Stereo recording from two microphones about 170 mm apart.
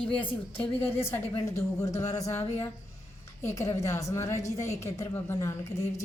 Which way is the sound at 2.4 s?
35° left (ahead or behind).